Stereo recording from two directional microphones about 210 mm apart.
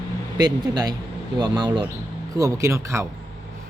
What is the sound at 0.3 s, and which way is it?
A man's voice, 20° right (ahead or behind).